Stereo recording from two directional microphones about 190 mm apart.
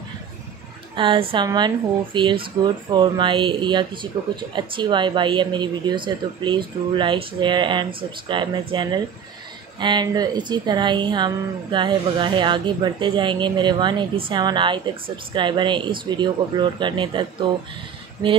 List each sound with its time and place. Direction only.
0.9 s speech: 25° right (ahead or behind)